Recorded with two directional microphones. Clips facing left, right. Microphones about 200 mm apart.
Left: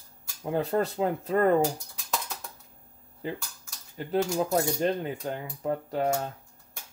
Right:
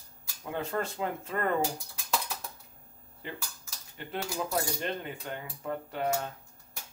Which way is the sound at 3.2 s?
40° left (ahead or behind).